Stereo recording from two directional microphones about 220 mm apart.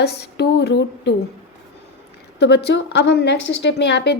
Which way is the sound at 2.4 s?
50° left (ahead or behind).